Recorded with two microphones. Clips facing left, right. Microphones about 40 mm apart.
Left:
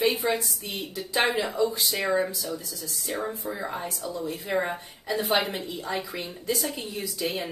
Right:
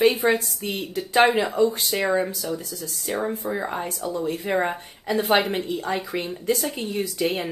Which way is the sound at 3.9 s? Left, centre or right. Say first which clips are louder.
Right 5 dB; right.